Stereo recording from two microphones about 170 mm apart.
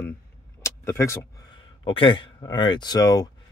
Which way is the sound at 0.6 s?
15° left (ahead or behind).